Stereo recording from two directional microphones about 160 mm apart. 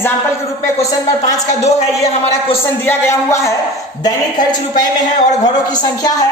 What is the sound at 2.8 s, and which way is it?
Speech, 15° left (ahead or behind).